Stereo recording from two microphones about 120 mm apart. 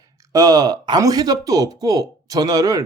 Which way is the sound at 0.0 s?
30° right (ahead or behind).